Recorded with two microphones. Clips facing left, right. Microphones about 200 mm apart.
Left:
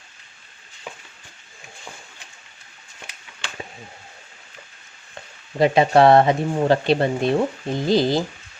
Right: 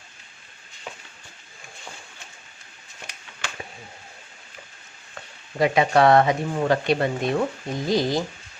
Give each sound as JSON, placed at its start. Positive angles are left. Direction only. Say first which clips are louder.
{"t": 5.5, "sound": "speech", "louder": "left 3 dB", "side_deg": 30}